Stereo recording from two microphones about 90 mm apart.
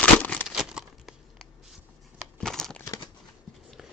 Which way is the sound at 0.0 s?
15° left (ahead or behind).